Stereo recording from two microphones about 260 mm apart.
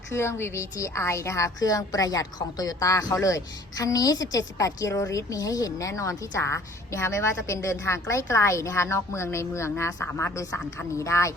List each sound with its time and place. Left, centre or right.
0.1 s a woman's voice: centre